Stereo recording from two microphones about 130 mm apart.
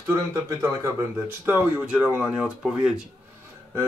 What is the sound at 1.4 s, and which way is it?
Speech, 10° right (ahead or behind).